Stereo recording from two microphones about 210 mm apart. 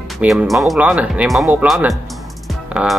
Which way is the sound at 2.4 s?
Centre (ahead or behind).